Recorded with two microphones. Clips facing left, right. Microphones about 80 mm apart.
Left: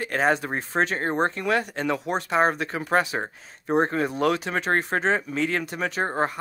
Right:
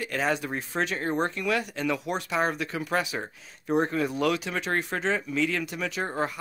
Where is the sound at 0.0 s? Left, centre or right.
Left.